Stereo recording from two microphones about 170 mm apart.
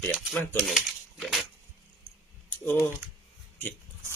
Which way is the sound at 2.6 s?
15° left (ahead or behind).